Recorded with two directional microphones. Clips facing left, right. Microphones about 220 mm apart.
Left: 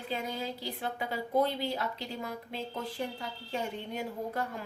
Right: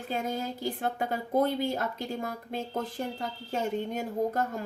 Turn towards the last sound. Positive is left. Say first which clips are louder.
# right 6 dB
turn(degrees=-45)  # may be behind; listen again after turning